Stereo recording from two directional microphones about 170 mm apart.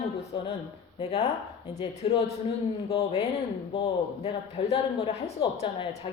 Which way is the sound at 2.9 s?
40° left (ahead or behind).